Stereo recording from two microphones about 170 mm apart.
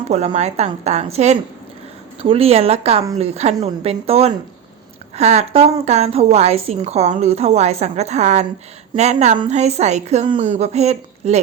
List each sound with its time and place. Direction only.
0.3 s a woman's voice: 40° right (ahead or behind)